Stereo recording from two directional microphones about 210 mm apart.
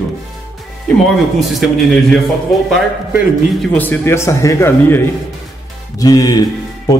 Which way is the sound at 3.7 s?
10° left (ahead or behind).